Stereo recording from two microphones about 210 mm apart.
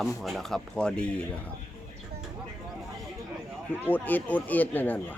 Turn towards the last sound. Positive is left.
turn(degrees=10)  # may be behind; listen again after turning